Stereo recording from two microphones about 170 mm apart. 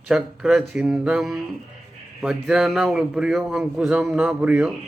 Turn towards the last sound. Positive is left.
turn(degrees=-10)  # may be behind; listen again after turning